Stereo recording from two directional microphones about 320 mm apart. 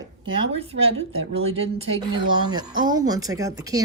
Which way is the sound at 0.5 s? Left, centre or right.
Centre.